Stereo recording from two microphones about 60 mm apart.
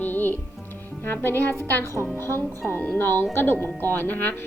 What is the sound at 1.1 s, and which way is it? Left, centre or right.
Speech, left.